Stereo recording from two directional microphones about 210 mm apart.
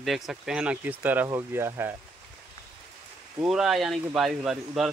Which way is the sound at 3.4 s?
Centre (ahead or behind).